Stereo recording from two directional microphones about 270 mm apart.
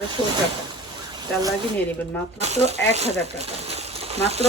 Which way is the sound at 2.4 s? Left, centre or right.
Right.